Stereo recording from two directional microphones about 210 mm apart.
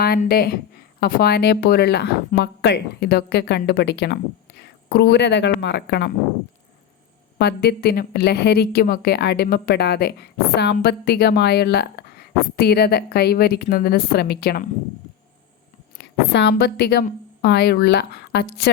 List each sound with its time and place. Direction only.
0.0 s a woman's voice: 45° left (ahead or behind)
7.3 s a woman's voice: 50° left (ahead or behind)
16.0 s speech: 55° left (ahead or behind)